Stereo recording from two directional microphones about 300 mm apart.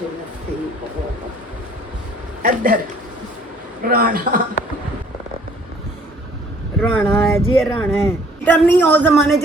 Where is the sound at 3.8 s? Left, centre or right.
Right.